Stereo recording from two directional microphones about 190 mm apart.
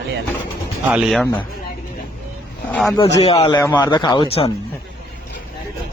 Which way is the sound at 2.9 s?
20° left (ahead or behind).